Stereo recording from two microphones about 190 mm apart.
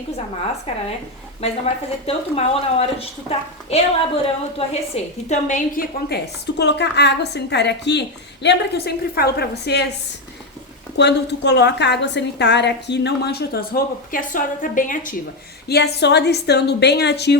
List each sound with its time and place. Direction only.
0.7 s speech: 30° left (ahead or behind)
6.1 s a woman's voice: 60° left (ahead or behind)
10.9 s a woman's voice: 65° left (ahead or behind); by 15.1 s 45° left (ahead or behind)
15.7 s a woman's voice: 60° left (ahead or behind)